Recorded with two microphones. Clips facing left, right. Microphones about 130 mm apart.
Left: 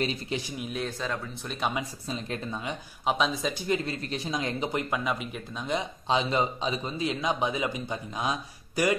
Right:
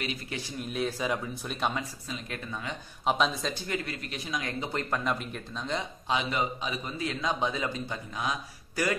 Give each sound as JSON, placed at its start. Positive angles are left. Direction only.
{"t": 0.0, "sound": "speech", "side_deg": 30}
{"t": 0.7, "sound": "speech", "side_deg": -5}
{"t": 2.0, "sound": "a man's voice", "side_deg": 30}
{"t": 3.1, "sound": "speech", "side_deg": 0}
{"t": 3.5, "sound": "a man's voice", "side_deg": 20}
{"t": 4.9, "sound": "speech", "side_deg": 5}
{"t": 6.0, "sound": "a man's voice", "side_deg": 25}